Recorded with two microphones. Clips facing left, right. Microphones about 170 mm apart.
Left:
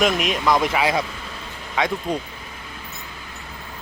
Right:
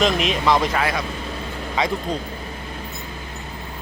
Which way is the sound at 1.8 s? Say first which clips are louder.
Even; centre (ahead or behind).